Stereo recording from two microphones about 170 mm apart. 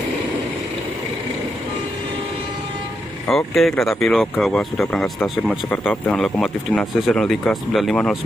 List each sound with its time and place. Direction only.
3.3 s speech: centre (ahead or behind)